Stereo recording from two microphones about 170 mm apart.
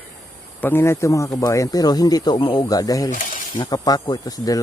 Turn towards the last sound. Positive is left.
turn(degrees=20)  # may be behind; listen again after turning